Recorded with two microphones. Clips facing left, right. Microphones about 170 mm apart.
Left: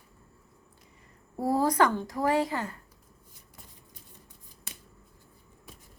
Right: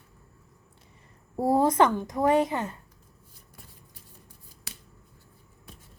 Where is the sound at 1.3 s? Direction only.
25° right (ahead or behind).